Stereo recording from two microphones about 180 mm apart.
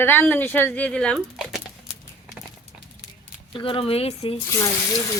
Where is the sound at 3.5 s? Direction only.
30° left (ahead or behind).